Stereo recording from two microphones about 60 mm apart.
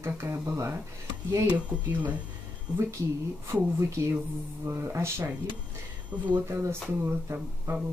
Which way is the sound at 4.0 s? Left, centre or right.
Right.